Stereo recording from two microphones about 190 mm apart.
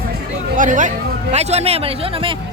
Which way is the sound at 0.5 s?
40° right (ahead or behind).